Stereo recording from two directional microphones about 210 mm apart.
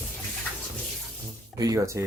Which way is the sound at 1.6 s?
15° right (ahead or behind).